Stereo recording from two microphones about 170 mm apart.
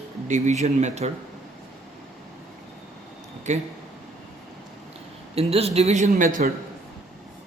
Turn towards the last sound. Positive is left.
turn(degrees=-50)  # may be behind; listen again after turning